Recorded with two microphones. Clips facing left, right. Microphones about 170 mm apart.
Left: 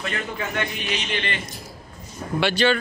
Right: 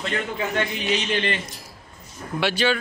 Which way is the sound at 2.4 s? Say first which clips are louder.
Left 2 dB; 5° right (ahead or behind).